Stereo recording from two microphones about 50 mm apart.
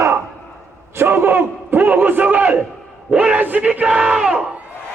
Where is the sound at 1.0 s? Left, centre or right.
Right.